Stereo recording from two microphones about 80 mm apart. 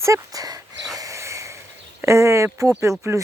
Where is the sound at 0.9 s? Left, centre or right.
Right.